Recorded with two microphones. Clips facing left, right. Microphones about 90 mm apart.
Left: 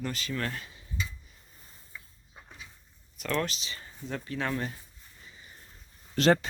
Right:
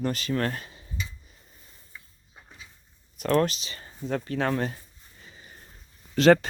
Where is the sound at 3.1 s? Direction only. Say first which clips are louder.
Right 8 dB; 45° right (ahead or behind).